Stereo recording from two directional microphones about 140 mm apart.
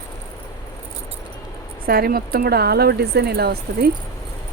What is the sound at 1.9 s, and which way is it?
Speech, 90° right.